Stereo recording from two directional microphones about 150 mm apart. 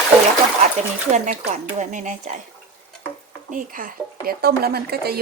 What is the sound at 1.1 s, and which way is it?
Speech, 50° right (ahead or behind).